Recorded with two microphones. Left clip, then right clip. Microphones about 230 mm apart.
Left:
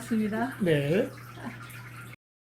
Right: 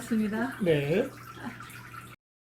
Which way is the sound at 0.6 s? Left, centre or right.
Left.